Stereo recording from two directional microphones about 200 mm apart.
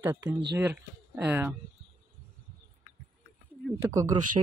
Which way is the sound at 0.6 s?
10° right (ahead or behind).